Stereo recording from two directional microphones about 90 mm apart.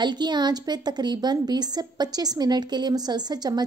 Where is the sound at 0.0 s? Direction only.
55° right (ahead or behind).